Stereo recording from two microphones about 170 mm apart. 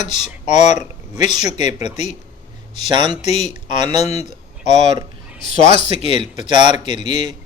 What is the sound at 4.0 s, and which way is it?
Speech, 40° left (ahead or behind).